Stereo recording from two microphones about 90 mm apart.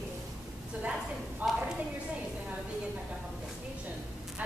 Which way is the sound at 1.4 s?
20° right (ahead or behind).